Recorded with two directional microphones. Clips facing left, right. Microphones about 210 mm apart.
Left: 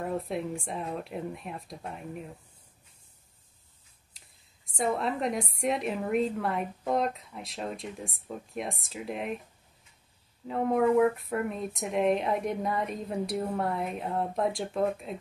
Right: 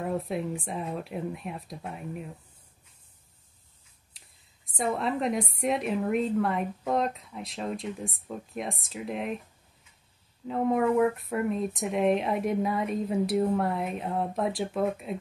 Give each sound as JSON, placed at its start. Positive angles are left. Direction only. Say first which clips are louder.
{"t": 0.0, "sound": "a woman's voice", "louder": "right 1 dB", "side_deg": 0}
{"t": 4.6, "sound": "a woman's voice", "louder": "even", "side_deg": 0}
{"t": 10.5, "sound": "a woman's voice", "louder": "even", "side_deg": 0}